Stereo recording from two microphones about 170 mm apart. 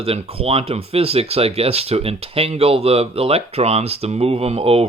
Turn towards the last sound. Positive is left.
turn(degrees=-35)  # may be behind; listen again after turning